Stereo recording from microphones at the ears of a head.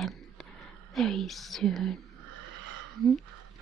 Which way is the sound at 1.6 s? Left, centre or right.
Right.